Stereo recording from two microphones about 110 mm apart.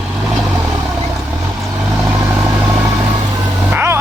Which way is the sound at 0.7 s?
30° right (ahead or behind).